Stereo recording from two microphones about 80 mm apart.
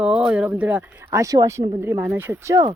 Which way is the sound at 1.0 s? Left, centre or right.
Right.